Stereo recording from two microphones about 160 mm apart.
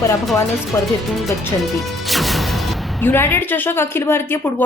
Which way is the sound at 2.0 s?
Centre (ahead or behind).